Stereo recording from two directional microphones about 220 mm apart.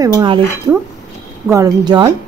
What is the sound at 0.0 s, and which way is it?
Speech, 15° right (ahead or behind).